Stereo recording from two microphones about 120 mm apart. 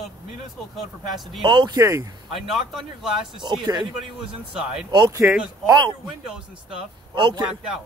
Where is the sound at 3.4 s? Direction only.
40° right (ahead or behind).